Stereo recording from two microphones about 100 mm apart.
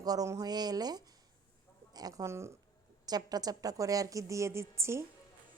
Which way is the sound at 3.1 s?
40° right (ahead or behind).